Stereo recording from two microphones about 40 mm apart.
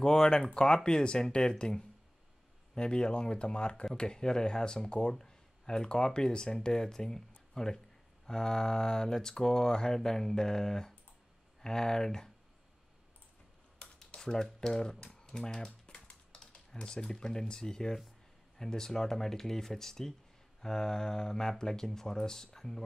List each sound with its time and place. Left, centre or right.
0.0 s speech: centre
13.7 s typing: centre
15.3 s speech: centre